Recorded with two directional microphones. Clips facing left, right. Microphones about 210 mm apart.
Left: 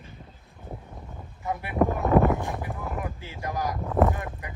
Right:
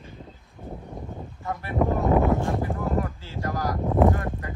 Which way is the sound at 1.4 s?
15° left (ahead or behind).